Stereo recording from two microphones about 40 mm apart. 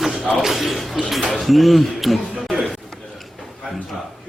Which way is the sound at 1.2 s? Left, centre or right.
Left.